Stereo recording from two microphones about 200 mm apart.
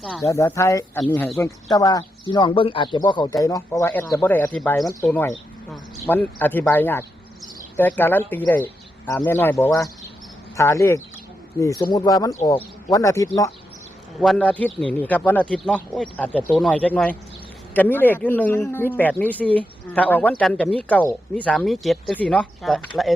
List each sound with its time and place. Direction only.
0.0 s a man's voice: centre (ahead or behind)
0.3 s speech: 15° left (ahead or behind)
1.7 s speech: 20° left (ahead or behind)
14.2 s a man's voice: 5° left (ahead or behind)